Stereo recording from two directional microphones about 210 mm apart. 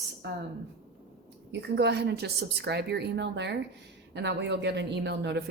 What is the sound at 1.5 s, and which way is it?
Speech, 55° right (ahead or behind).